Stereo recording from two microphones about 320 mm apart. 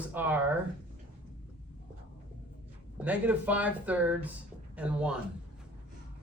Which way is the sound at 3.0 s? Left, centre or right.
Centre.